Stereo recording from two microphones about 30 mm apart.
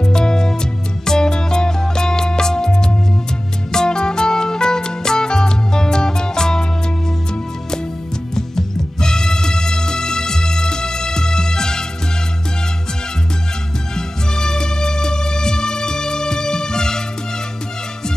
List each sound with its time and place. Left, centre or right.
0.0 s music: left
8.4 s music: centre
13.9 s music: left